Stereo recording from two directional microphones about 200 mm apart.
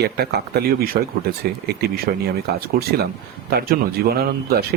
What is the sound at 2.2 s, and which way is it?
Speech, 50° right (ahead or behind).